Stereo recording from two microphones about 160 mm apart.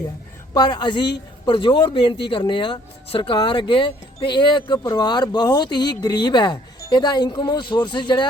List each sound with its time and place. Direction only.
0.5 s speech: 25° left (ahead or behind)